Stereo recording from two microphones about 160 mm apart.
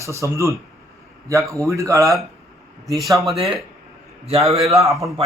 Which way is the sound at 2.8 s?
Centre (ahead or behind).